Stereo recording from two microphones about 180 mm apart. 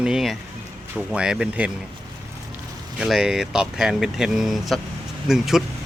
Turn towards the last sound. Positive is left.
turn(degrees=0)  # may be behind; listen again after turning